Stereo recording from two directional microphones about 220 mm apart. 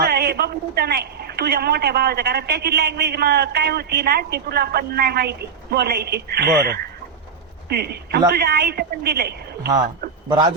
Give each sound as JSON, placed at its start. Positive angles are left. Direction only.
{"t": 0.0, "sound": "a man's voice", "side_deg": -45}
{"t": 10.2, "sound": "a man's voice", "side_deg": -20}